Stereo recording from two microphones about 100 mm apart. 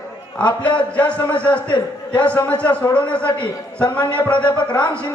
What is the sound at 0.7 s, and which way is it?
Speech, 15° left (ahead or behind).